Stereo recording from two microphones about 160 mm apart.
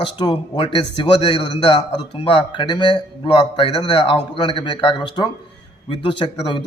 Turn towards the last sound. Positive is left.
turn(degrees=30)  # may be behind; listen again after turning